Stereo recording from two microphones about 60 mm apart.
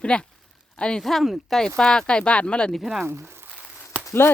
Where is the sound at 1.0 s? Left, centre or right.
Centre.